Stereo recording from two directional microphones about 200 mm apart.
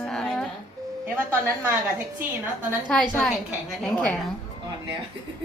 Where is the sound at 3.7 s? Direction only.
5° left (ahead or behind).